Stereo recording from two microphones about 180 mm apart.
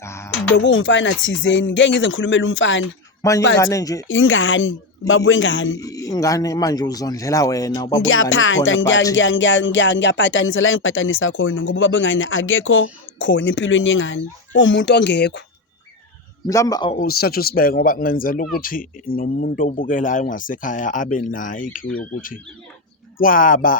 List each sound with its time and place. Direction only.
0.0 s music: 15° left (ahead or behind)
0.5 s speech: 90° left
3.2 s a man's voice: 20° left (ahead or behind)
4.1 s speech: 90° left
5.8 s speech: 20° left (ahead or behind)
8.0 s speech: 90° left; by 15.4 s 75° left (ahead or behind)
16.5 s speech: 20° left (ahead or behind)
16.9 s speech: 55° left (ahead or behind)
23.1 s speech: 50° left (ahead or behind)